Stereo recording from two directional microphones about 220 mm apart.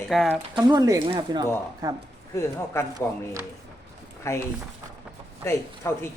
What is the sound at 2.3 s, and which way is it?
Speech, 15° left (ahead or behind).